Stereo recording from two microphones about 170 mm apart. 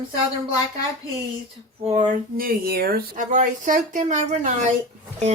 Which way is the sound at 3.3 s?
45° right (ahead or behind).